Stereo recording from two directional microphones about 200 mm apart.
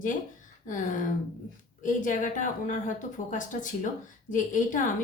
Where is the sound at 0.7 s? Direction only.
40° left (ahead or behind).